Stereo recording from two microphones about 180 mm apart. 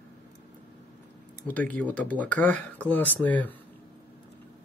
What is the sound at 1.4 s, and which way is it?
Speech, 10° left (ahead or behind).